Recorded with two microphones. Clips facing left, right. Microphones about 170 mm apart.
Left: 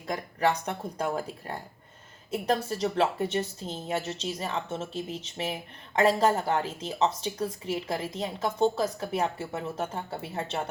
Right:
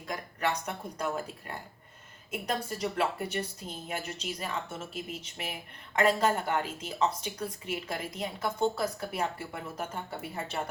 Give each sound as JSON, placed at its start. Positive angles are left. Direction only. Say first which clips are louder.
{"t": 0.3, "sound": "a woman's voice", "louder": "left 5 dB", "side_deg": 35}